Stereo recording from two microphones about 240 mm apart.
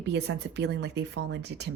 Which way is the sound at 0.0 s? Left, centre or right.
Right.